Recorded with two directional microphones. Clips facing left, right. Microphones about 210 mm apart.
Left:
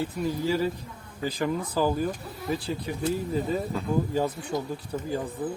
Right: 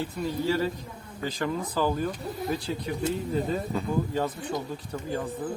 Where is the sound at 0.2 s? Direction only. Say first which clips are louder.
Even; 5° left (ahead or behind).